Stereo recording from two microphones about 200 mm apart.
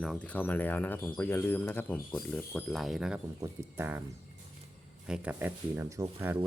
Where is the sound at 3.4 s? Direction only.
15° right (ahead or behind).